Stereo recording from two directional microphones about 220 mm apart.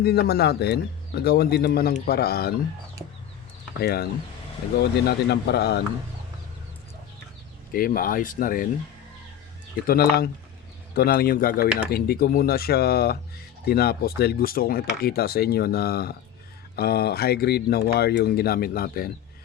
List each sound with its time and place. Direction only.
0.0 s speech: 45° left (ahead or behind)
3.8 s speech: 45° left (ahead or behind)
7.7 s speech: 40° left (ahead or behind)
9.8 s speech: 45° left (ahead or behind)